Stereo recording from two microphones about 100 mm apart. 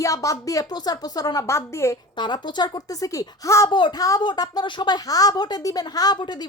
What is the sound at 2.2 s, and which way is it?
Speech, 50° left (ahead or behind).